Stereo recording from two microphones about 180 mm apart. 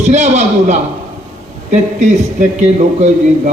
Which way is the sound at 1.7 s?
40° right (ahead or behind).